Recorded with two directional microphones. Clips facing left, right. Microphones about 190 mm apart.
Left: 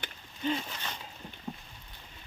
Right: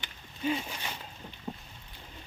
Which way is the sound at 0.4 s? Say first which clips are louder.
Right 1 dB; 10° right (ahead or behind).